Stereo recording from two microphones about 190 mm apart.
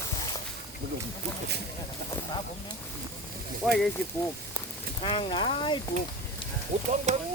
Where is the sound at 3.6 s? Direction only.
5° right (ahead or behind).